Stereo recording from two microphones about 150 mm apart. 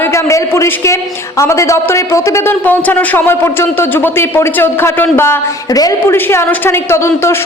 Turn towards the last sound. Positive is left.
turn(degrees=20)  # may be behind; listen again after turning